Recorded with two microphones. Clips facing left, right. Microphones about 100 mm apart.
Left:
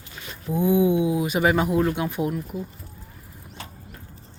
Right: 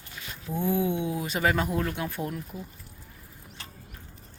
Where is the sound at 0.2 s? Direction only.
45° left (ahead or behind).